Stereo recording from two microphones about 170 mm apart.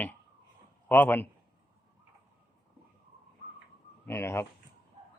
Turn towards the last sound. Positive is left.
turn(degrees=15)  # may be behind; listen again after turning